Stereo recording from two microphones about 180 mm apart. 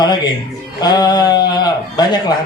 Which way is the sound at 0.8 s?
20° left (ahead or behind).